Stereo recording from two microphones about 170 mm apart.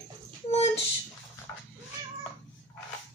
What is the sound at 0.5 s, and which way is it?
Speech, 35° left (ahead or behind).